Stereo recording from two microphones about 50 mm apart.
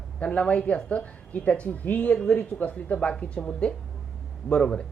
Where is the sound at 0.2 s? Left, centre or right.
Left.